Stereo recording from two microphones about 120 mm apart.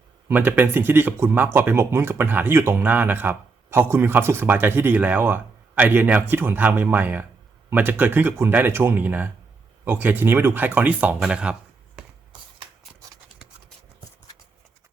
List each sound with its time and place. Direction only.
0.3 s speech: 15° right (ahead or behind)